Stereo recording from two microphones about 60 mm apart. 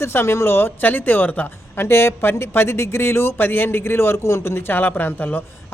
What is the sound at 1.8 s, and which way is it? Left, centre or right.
Speech, left.